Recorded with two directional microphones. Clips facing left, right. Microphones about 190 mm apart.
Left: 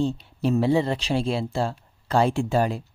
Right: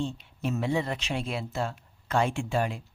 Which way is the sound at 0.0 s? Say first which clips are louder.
Left 7 dB; 35° left (ahead or behind).